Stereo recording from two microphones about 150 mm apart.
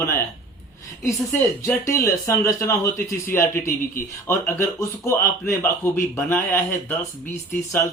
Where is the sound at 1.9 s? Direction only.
20° left (ahead or behind).